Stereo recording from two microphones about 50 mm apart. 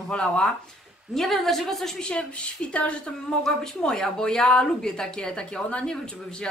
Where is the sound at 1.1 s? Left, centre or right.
Centre.